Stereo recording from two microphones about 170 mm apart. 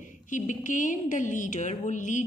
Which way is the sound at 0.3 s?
50° left (ahead or behind).